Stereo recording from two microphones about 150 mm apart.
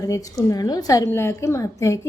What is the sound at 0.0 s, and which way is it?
A woman's voice, 20° left (ahead or behind).